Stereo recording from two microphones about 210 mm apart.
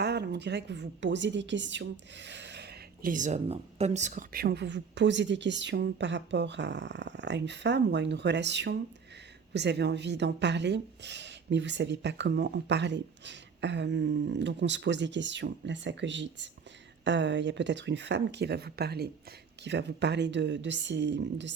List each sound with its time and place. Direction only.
0.0 s a woman's voice: 50° right (ahead or behind)